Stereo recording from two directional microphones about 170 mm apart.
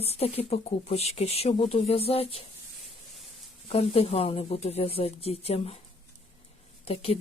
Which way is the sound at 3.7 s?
35° left (ahead or behind).